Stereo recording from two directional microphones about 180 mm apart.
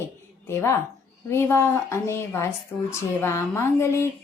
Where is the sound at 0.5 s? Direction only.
15° left (ahead or behind).